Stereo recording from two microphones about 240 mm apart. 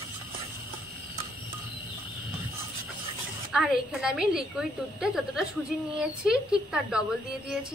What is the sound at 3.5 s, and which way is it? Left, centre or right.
Speech, centre.